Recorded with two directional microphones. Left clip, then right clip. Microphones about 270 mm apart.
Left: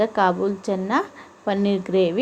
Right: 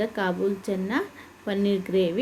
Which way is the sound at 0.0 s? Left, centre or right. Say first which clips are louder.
Left 7 dB; centre.